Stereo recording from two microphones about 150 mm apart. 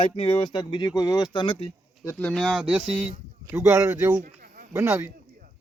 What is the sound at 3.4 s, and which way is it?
Speech, 15° right (ahead or behind).